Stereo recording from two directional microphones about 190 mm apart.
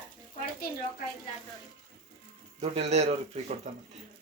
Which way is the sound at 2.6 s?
35° right (ahead or behind).